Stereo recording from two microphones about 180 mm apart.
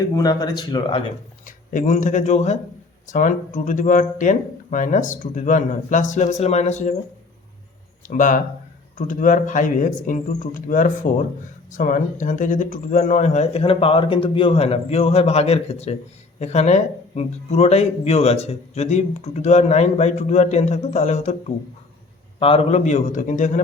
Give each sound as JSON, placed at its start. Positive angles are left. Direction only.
{"t": 0.1, "sound": "speech", "side_deg": 20}
{"t": 1.5, "sound": "speech", "side_deg": 45}
{"t": 8.0, "sound": "speech", "side_deg": 45}
{"t": 22.4, "sound": "speech", "side_deg": 30}